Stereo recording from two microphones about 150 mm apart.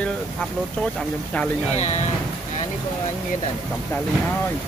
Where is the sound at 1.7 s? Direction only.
50° left (ahead or behind).